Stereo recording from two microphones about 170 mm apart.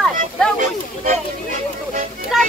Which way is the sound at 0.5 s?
45° right (ahead or behind).